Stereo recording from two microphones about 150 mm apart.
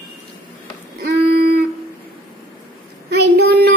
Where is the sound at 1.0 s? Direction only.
90° right.